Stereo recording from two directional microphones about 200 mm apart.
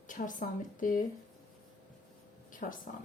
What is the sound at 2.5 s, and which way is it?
Speech, 40° left (ahead or behind).